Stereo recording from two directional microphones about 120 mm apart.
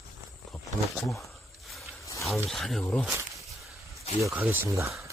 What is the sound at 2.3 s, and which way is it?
Speech, centre (ahead or behind).